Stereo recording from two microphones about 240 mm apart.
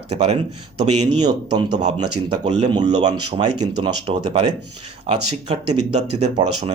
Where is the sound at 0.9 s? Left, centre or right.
Right.